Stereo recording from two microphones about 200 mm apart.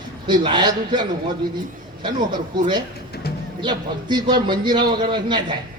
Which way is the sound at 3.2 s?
55° left (ahead or behind).